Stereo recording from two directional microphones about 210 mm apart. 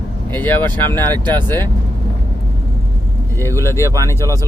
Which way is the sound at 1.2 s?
20° right (ahead or behind).